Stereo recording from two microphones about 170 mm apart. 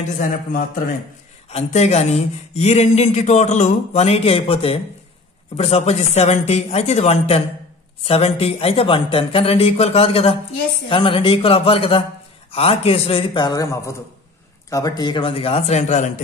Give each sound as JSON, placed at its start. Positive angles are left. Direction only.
{"t": 0.0, "sound": "a man's voice", "side_deg": 50}
{"t": 1.5, "sound": "speech", "side_deg": 40}